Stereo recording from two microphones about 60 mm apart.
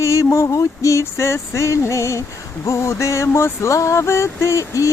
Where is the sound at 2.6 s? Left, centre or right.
Left.